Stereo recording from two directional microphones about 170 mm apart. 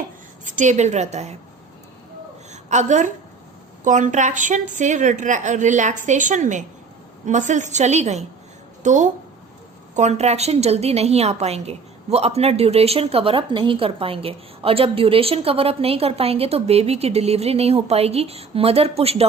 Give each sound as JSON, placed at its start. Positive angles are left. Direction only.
{"t": 0.4, "sound": "a woman's voice", "side_deg": -45}
{"t": 2.5, "sound": "a sound", "side_deg": -45}
{"t": 3.8, "sound": "a woman's voice", "side_deg": -50}